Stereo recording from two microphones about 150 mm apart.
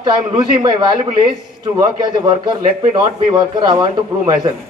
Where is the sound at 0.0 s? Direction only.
30° right (ahead or behind).